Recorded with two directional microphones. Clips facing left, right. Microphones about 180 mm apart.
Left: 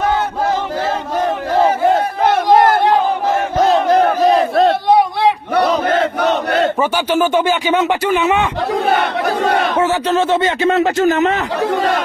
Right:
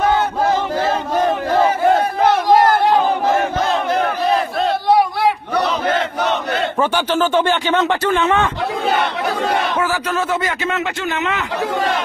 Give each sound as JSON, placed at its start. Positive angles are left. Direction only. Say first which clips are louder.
{"t": 3.6, "sound": "battle cry", "louder": "left 6 dB", "side_deg": 40}
{"t": 4.8, "sound": "a sound", "louder": "left 2 dB", "side_deg": 20}
{"t": 6.2, "sound": "battle cry", "louder": "left 5 dB", "side_deg": 40}
{"t": 6.8, "sound": "speech", "louder": "left 2 dB", "side_deg": 10}
{"t": 9.4, "sound": "a man's voice", "louder": "left 3 dB", "side_deg": 60}
{"t": 9.8, "sound": "speech", "louder": "left 5 dB", "side_deg": 25}